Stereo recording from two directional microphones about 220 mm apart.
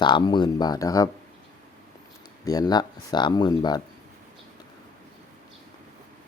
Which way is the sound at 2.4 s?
15° left (ahead or behind).